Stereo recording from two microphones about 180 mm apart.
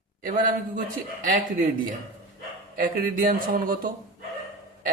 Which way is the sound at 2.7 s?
50° right (ahead or behind).